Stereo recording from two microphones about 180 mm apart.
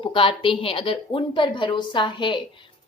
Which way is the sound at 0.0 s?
30° left (ahead or behind).